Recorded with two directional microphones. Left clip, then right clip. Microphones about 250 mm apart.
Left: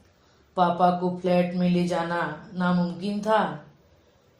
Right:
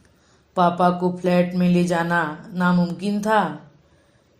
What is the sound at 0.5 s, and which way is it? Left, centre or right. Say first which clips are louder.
Speech: right 3 dB; right.